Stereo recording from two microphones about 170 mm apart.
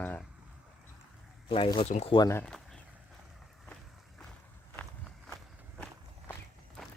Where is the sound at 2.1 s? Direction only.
20° left (ahead or behind).